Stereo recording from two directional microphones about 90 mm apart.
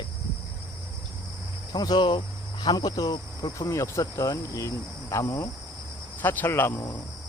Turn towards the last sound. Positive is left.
turn(degrees=25)  # may be behind; listen again after turning